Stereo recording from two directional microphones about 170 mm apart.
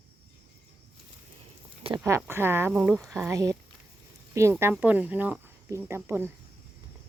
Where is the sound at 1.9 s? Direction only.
15° right (ahead or behind).